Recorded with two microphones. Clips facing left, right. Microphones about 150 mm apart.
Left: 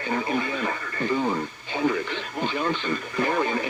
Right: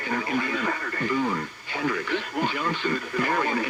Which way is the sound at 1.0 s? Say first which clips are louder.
Left 2 dB; 25° left (ahead or behind).